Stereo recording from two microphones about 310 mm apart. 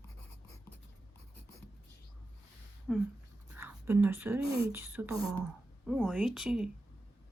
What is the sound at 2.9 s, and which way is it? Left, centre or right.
Speech, centre.